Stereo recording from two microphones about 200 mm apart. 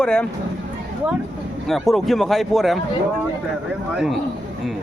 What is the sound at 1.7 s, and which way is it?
Speech, centre (ahead or behind).